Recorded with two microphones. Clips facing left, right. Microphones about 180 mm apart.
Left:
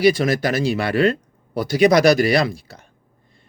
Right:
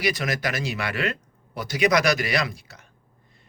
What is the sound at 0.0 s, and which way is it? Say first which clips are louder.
Speech: left 9 dB; 30° left (ahead or behind).